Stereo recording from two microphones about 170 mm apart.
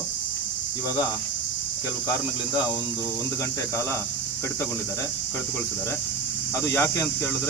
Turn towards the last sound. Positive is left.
turn(degrees=15)  # may be behind; listen again after turning